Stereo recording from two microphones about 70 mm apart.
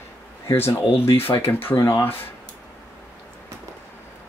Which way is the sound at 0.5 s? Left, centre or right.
Left.